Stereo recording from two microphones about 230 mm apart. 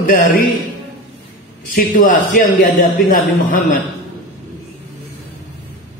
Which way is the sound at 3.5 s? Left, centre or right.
Left.